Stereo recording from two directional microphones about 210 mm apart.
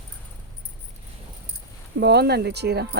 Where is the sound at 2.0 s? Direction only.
50° right (ahead or behind).